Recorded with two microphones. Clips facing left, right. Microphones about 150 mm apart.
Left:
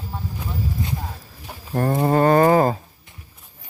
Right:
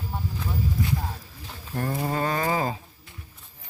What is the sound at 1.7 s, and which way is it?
Livestock, 50° left (ahead or behind).